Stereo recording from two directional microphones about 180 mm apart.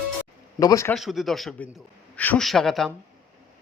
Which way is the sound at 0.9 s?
Centre (ahead or behind).